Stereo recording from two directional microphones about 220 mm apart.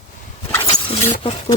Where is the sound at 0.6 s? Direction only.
25° left (ahead or behind).